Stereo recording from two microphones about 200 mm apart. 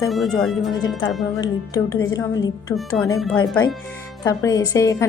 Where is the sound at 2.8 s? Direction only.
Centre (ahead or behind).